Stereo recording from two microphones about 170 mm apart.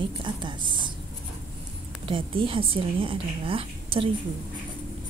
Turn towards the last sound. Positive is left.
turn(degrees=-30)  # may be behind; listen again after turning